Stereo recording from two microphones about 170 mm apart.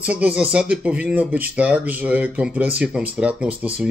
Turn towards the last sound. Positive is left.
turn(degrees=-5)  # may be behind; listen again after turning